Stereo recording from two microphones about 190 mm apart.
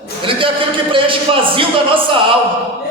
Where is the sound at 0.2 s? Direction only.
25° right (ahead or behind).